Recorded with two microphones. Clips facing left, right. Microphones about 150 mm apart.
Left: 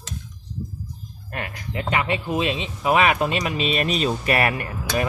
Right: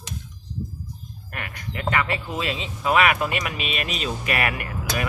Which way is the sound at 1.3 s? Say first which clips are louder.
Left 4 dB; 30° left (ahead or behind).